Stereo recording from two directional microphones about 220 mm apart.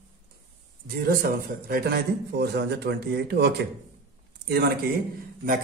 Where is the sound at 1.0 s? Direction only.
40° right (ahead or behind).